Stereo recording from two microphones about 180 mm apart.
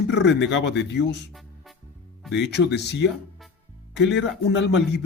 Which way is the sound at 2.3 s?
70° left (ahead or behind).